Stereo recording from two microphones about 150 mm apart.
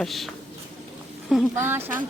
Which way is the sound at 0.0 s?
Centre (ahead or behind).